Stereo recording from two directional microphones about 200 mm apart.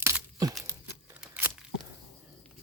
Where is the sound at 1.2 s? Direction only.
5° right (ahead or behind).